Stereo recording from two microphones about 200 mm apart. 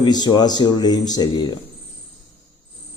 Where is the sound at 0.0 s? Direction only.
20° left (ahead or behind).